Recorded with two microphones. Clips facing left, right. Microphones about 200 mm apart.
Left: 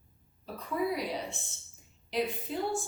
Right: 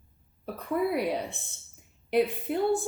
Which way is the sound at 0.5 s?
60° right (ahead or behind).